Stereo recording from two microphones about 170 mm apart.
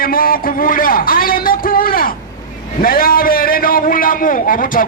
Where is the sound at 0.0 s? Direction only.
60° left (ahead or behind).